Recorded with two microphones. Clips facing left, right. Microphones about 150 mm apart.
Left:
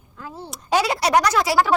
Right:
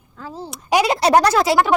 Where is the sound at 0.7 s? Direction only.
20° right (ahead or behind).